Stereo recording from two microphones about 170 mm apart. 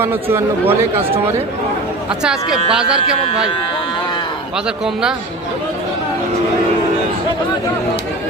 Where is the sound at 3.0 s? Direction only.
35° left (ahead or behind).